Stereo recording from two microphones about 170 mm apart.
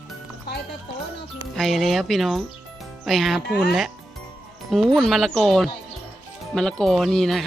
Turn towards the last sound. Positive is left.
turn(degrees=0)  # may be behind; listen again after turning